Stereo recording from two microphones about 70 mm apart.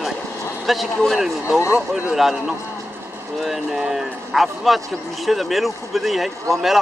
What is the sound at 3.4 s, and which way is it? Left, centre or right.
Speech, centre.